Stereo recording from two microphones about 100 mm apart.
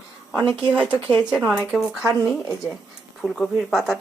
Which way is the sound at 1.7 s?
Centre (ahead or behind).